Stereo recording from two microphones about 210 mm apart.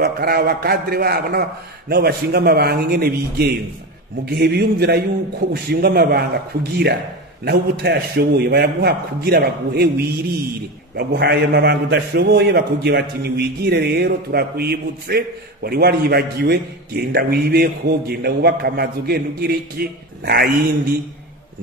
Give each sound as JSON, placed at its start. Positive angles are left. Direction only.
{"t": 0.0, "sound": "a man's voice", "side_deg": -50}